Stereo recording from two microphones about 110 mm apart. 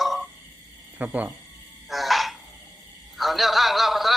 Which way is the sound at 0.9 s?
15° right (ahead or behind).